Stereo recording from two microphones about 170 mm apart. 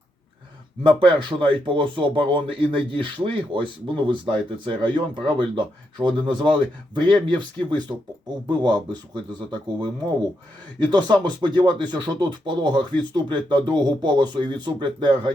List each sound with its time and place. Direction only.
0.9 s speech: 30° right (ahead or behind)
10.9 s speech: 25° right (ahead or behind)